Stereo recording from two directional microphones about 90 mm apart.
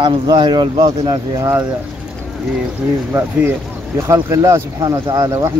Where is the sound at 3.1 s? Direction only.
25° right (ahead or behind).